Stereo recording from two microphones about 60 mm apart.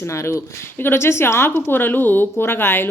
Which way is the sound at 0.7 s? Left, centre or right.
Left.